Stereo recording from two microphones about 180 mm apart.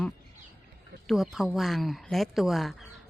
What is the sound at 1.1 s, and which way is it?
A woman's voice, centre (ahead or behind).